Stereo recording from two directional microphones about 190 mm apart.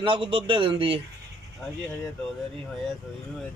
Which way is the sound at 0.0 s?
25° right (ahead or behind).